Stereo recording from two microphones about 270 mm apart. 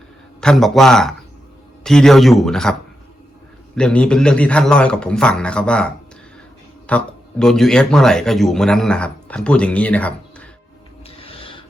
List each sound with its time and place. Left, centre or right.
0.4 s a man's voice: centre
3.8 s a man's voice: centre
11.2 s filing: left